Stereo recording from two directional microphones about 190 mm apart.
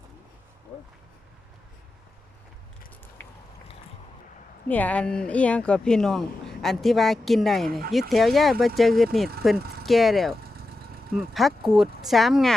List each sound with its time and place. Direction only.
4.7 s speech: 5° left (ahead or behind)
9.6 s speech: 55° right (ahead or behind)
9.8 s speech: centre (ahead or behind)
10.4 s engine: 55° right (ahead or behind)
11.1 s speech: centre (ahead or behind)